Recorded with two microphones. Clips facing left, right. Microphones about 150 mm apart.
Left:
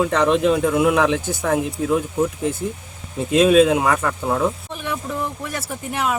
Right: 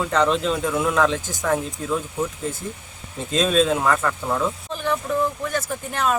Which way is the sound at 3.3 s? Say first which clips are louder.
Left 6 dB; 10° left (ahead or behind).